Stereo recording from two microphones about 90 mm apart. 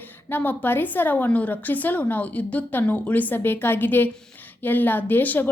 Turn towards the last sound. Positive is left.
turn(degrees=20)  # may be behind; listen again after turning